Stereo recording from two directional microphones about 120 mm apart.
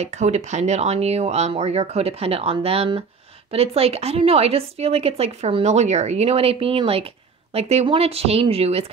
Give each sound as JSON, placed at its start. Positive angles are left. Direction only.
{"t": 0.0, "sound": "a woman's voice", "side_deg": -70}